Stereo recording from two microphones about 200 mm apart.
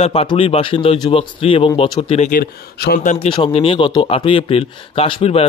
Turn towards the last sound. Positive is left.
turn(degrees=30)  # may be behind; listen again after turning